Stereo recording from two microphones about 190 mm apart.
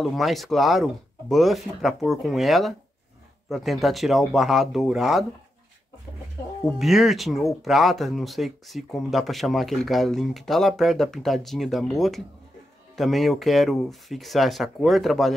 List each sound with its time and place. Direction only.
0.0 s speech: centre (ahead or behind)
6.8 s speech: centre (ahead or behind)